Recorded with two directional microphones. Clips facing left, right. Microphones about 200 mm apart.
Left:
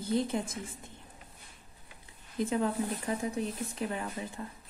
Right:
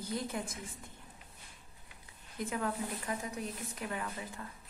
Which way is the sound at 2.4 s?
30° left (ahead or behind).